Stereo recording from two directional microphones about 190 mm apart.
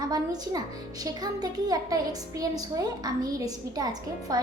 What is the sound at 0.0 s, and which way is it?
A woman's voice, 20° right (ahead or behind).